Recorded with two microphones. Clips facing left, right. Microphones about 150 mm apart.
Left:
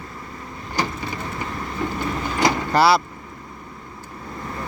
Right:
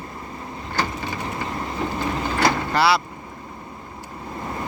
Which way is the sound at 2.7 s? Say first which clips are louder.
Left 4 dB; 40° left (ahead or behind).